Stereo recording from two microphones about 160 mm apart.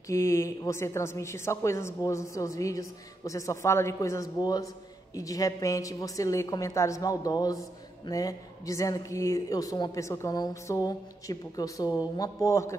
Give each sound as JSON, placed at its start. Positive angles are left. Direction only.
{"t": 0.1, "sound": "speech", "side_deg": 20}